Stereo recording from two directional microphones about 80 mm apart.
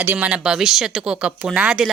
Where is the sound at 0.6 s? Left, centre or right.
Centre.